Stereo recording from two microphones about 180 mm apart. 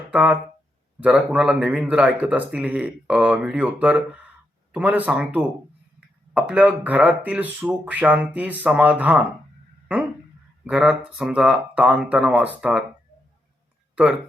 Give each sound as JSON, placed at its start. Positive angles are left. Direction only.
{"t": 0.1, "sound": "speech", "side_deg": -5}
{"t": 10.6, "sound": "speech", "side_deg": -5}
{"t": 13.9, "sound": "speech", "side_deg": -5}